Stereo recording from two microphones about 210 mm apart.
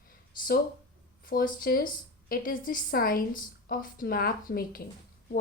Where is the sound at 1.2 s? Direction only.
40° left (ahead or behind).